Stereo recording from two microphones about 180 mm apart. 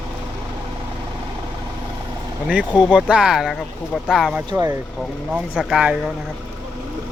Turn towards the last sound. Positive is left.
turn(degrees=-5)  # may be behind; listen again after turning